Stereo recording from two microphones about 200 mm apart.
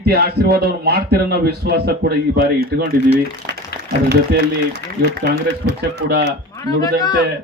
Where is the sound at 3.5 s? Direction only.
55° right (ahead or behind).